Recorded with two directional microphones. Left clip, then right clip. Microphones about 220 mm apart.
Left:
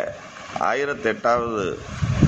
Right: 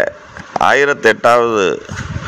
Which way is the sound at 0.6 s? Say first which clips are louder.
Right 11 dB; 45° right (ahead or behind).